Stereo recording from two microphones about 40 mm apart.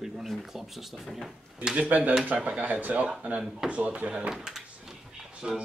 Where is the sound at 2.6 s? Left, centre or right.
Right.